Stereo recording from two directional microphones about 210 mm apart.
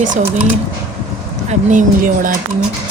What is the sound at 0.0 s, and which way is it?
Speech, 35° right (ahead or behind).